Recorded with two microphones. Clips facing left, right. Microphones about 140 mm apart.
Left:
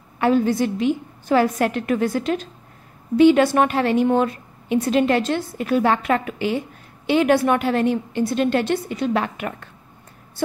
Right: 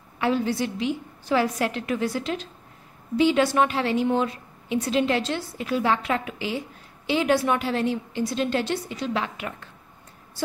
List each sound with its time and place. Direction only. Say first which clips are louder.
0.2 s a woman's voice: left 6 dB; 50° left (ahead or behind)